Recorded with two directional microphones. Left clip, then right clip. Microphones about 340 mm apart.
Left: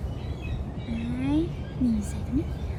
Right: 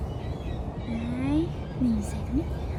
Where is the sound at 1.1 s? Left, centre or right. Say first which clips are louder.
Left 1 dB; centre.